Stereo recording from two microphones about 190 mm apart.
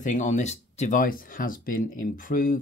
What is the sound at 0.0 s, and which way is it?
Speech, 40° left (ahead or behind).